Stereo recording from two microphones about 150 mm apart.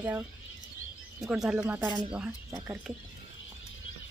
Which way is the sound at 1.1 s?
Centre (ahead or behind).